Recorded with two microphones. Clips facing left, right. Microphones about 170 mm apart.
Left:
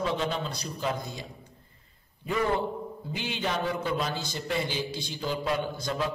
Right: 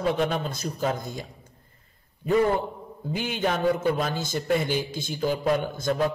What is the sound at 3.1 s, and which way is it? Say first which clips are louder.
A man's voice: right 5 dB; 50° right (ahead or behind).